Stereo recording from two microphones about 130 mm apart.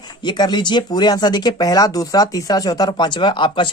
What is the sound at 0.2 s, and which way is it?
Speech, 35° left (ahead or behind).